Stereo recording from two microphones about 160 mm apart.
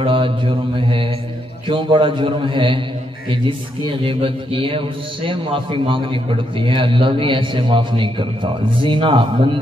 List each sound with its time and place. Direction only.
0.0 s a man's voice: 30° right (ahead or behind)